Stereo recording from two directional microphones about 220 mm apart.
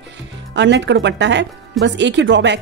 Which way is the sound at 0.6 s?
55° right (ahead or behind).